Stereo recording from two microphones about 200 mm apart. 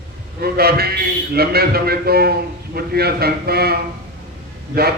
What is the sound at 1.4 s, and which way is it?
A man's voice, 50° right (ahead or behind).